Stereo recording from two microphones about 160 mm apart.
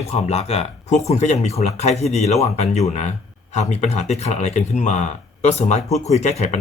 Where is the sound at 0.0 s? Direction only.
40° left (ahead or behind).